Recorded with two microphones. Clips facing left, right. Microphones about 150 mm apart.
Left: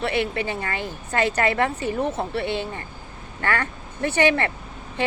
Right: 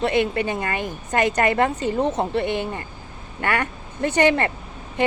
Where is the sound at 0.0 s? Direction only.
15° right (ahead or behind).